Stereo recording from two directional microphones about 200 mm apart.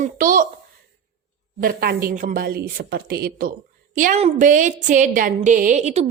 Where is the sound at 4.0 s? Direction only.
35° right (ahead or behind).